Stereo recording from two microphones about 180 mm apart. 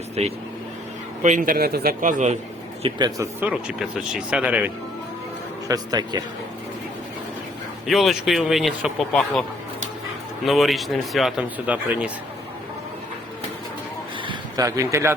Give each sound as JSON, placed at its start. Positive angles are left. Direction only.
{"t": 0.2, "sound": "speech", "side_deg": -35}
{"t": 1.2, "sound": "a man's voice", "side_deg": -45}
{"t": 2.8, "sound": "a man's voice", "side_deg": -25}
{"t": 3.4, "sound": "speech", "side_deg": -5}
{"t": 5.6, "sound": "a man's voice", "side_deg": -20}
{"t": 7.9, "sound": "speech", "side_deg": 0}
{"t": 10.4, "sound": "speech", "side_deg": 0}
{"t": 14.3, "sound": "speech", "side_deg": -20}